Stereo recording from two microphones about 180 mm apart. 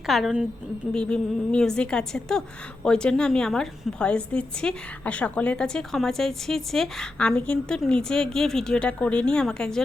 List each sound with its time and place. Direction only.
0.1 s a woman's voice: centre (ahead or behind)